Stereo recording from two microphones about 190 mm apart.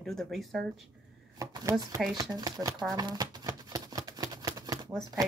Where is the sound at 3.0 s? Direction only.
20° right (ahead or behind).